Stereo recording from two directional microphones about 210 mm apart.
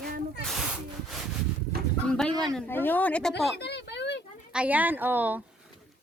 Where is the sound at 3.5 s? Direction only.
55° left (ahead or behind).